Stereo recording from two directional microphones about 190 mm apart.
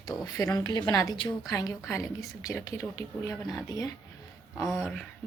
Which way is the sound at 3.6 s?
20° left (ahead or behind).